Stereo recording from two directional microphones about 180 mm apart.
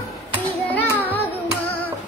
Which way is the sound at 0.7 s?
10° left (ahead or behind).